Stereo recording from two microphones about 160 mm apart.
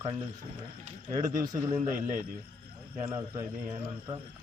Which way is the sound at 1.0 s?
25° right (ahead or behind).